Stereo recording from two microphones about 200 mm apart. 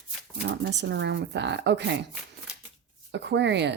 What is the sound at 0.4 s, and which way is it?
Speech, 60° right (ahead or behind).